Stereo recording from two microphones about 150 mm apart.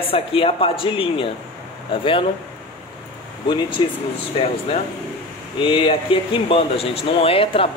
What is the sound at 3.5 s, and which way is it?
Speech, 30° left (ahead or behind).